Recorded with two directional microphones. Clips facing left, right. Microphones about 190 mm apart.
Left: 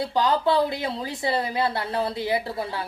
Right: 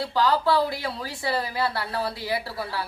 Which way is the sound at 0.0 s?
20° left (ahead or behind).